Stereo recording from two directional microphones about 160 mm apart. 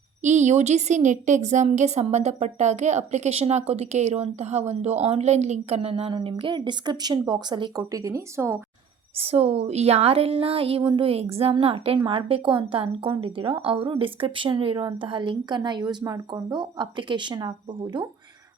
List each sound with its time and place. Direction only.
0.2 s a woman's voice: 50° right (ahead or behind); by 8.5 s 20° right (ahead or behind)
9.1 s speech: 40° right (ahead or behind)